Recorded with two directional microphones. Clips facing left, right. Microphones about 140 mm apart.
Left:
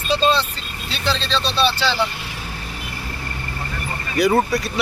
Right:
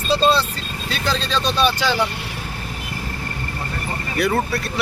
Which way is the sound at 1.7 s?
15° right (ahead or behind).